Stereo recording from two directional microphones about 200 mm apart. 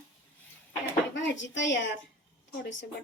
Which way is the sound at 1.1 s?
65° left (ahead or behind).